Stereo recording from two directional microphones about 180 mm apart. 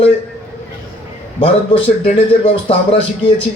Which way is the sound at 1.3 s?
30° left (ahead or behind).